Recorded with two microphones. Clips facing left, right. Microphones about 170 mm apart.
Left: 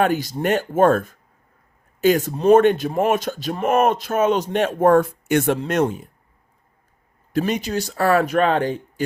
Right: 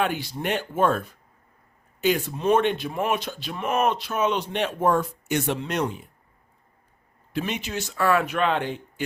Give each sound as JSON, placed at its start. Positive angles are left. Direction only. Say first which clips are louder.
{"t": 0.0, "sound": "speech", "louder": "left 7 dB", "side_deg": 40}
{"t": 7.3, "sound": "speech", "louder": "left 7 dB", "side_deg": 40}